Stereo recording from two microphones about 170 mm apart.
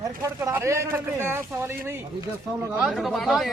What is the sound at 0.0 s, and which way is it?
Speech, 20° right (ahead or behind).